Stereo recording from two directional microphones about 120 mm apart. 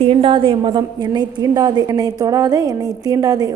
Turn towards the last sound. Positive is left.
turn(degrees=-30)  # may be behind; listen again after turning